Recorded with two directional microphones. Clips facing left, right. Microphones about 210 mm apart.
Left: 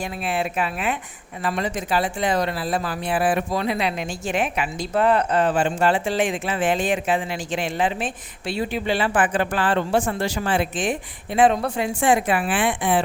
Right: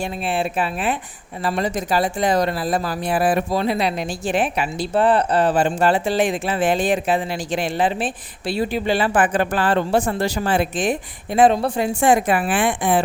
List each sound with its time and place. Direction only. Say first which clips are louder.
0.0 s speech: right 3 dB; 30° right (ahead or behind); by 13.0 s 45° right (ahead or behind)